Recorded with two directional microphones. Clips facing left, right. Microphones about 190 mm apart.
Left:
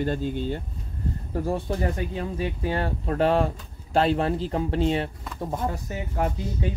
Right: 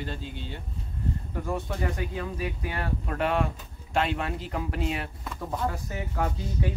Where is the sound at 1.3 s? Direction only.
30° left (ahead or behind).